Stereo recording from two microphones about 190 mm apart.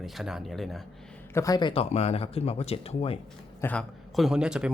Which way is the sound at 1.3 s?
20° left (ahead or behind).